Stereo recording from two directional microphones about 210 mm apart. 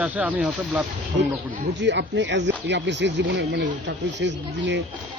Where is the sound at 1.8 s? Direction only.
60° right (ahead or behind).